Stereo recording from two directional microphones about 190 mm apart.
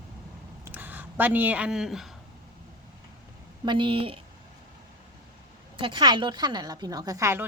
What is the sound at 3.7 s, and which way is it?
Speech, 25° right (ahead or behind).